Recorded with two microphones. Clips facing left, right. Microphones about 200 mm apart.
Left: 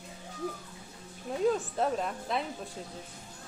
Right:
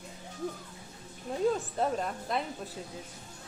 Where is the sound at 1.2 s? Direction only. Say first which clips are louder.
Left 1 dB; centre (ahead or behind).